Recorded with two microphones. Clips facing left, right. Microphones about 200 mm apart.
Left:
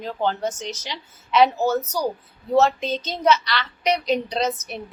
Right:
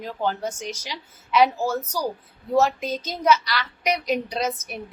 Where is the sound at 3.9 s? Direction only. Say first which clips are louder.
Left 3 dB; 30° left (ahead or behind).